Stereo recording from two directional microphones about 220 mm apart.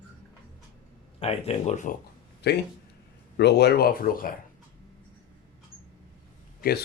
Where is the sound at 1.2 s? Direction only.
30° left (ahead or behind).